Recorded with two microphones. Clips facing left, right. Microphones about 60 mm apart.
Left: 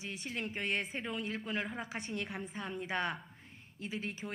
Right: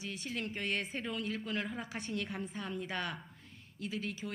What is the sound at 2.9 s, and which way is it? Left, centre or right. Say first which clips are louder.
A woman's voice: left 3 dB; left.